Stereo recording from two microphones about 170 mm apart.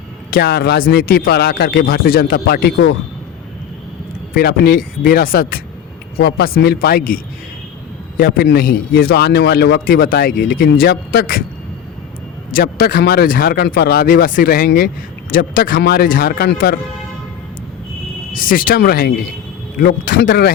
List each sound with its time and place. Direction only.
0.3 s a man's voice: 65° left (ahead or behind)
4.4 s a man's voice: 65° left (ahead or behind)
8.2 s a man's voice: 70° left (ahead or behind)
12.5 s a man's voice: 60° left (ahead or behind)
18.3 s a man's voice: 55° left (ahead or behind)